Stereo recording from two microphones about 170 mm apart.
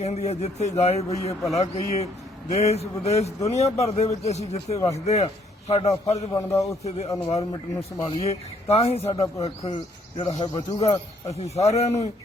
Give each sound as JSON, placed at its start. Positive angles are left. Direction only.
{"t": 0.0, "sound": "speech", "side_deg": 40}
{"t": 6.3, "sound": "a man's voice", "side_deg": 20}
{"t": 7.3, "sound": "speech", "side_deg": 35}
{"t": 11.3, "sound": "speech", "side_deg": 40}